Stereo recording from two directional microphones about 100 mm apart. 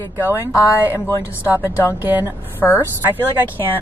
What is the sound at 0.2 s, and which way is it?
Speech, 30° left (ahead or behind).